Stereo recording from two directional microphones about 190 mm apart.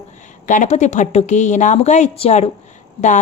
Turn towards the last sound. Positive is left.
turn(degrees=40)  # may be behind; listen again after turning